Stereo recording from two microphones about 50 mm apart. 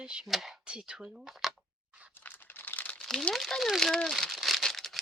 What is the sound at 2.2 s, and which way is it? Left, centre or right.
Crumpling, left.